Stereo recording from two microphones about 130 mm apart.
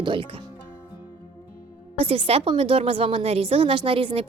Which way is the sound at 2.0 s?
45° right (ahead or behind).